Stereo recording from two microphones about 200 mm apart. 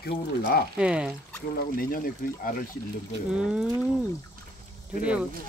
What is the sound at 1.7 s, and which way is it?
Speech, 45° left (ahead or behind).